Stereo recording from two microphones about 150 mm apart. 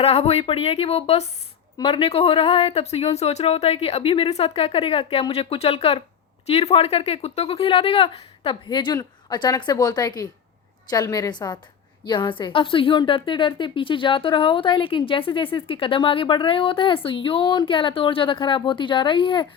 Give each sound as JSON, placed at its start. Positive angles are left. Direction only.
{"t": 0.0, "sound": "a woman's voice", "side_deg": 45}